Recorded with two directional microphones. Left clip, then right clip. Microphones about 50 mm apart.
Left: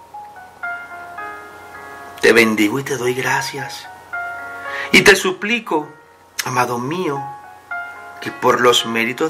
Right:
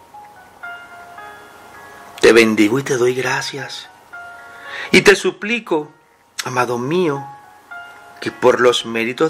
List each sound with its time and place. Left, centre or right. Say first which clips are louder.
0.7 s music: left 5 dB; left
2.1 s speech: right 2 dB; right